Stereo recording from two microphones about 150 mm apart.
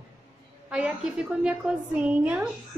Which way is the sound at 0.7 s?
5° right (ahead or behind).